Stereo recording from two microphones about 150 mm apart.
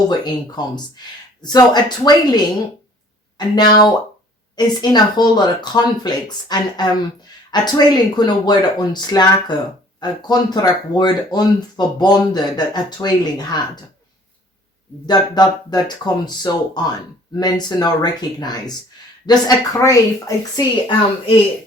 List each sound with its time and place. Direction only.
1.4 s speech: 30° left (ahead or behind)
15.0 s speech: 30° left (ahead or behind)